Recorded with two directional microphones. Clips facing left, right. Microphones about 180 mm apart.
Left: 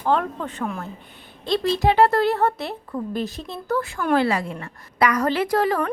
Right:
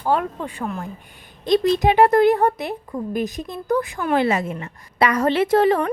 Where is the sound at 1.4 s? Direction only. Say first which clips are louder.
Right 4 dB; 15° right (ahead or behind).